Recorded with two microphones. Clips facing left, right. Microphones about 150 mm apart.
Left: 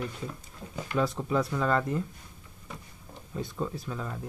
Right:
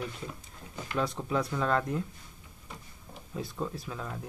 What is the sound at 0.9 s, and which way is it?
Speech, centre (ahead or behind).